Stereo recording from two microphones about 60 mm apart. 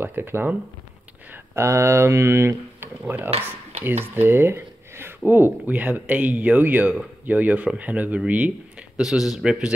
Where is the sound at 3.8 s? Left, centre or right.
Right.